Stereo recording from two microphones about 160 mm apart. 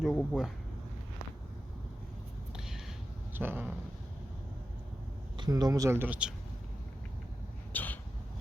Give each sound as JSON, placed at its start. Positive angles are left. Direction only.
{"t": 0.0, "sound": "speech", "side_deg": 0}
{"t": 3.3, "sound": "speech", "side_deg": -15}
{"t": 5.4, "sound": "speech", "side_deg": -25}
{"t": 7.7, "sound": "a sound", "side_deg": 10}